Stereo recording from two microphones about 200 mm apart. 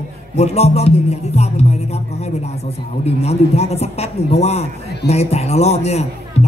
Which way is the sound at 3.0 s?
30° left (ahead or behind).